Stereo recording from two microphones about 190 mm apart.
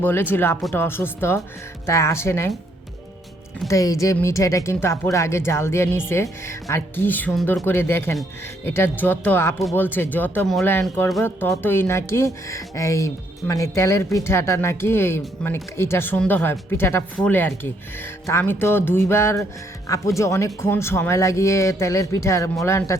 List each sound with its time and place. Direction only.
0.0 s speech: 10° left (ahead or behind)
3.7 s speech: 15° left (ahead or behind)